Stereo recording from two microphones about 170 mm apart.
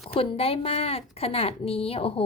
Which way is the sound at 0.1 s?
35° left (ahead or behind).